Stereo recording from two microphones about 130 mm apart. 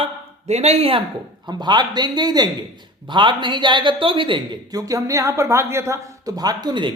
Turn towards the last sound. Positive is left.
turn(degrees=-35)  # may be behind; listen again after turning